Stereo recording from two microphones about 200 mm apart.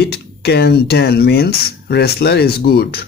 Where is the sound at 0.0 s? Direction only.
55° left (ahead or behind).